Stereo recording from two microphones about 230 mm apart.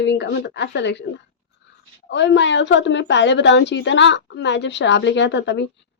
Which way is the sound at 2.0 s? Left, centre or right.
Left.